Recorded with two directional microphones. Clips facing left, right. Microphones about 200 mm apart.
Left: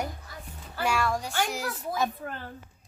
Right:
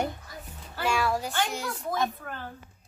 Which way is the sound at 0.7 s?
Centre (ahead or behind).